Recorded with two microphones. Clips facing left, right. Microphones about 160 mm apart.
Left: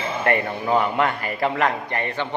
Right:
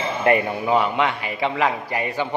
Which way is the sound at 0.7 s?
Centre (ahead or behind).